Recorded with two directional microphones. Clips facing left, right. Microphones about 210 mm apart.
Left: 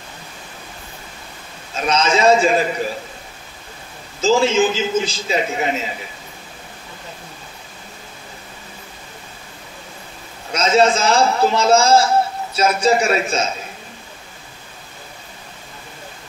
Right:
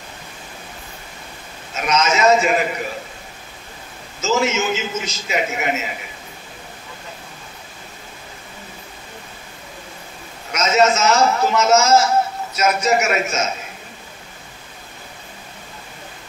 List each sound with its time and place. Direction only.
1.8 s a man's voice: 30° left (ahead or behind)
4.2 s a man's voice: 30° left (ahead or behind)
10.5 s a man's voice: 30° left (ahead or behind)